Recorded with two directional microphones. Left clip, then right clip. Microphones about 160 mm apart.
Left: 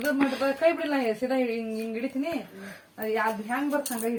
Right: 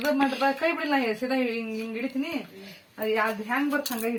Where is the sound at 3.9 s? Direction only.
Centre (ahead or behind).